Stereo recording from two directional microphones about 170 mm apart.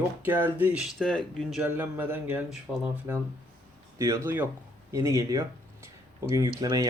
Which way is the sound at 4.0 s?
15° right (ahead or behind).